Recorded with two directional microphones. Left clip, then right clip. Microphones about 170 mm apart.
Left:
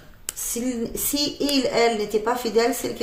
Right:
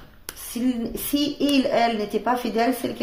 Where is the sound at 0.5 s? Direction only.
25° right (ahead or behind).